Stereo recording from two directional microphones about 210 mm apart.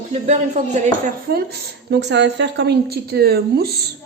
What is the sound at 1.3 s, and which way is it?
Speech, 45° right (ahead or behind).